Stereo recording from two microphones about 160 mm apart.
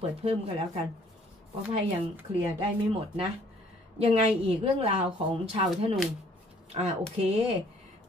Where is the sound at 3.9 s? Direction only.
40° right (ahead or behind).